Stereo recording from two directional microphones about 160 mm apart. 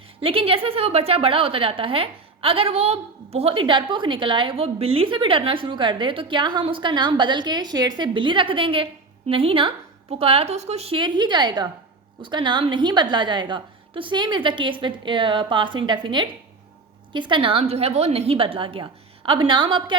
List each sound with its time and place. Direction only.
0.2 s a woman's voice: 35° right (ahead or behind)